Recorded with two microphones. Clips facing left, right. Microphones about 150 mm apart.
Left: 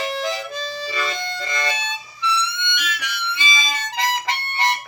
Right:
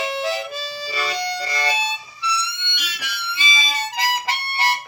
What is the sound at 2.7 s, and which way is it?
Harmonica, 35° right (ahead or behind).